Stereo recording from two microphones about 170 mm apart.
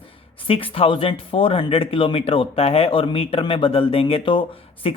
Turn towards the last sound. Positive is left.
turn(degrees=30)  # may be behind; listen again after turning